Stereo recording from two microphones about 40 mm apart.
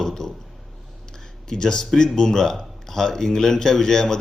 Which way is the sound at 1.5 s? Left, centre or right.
Centre.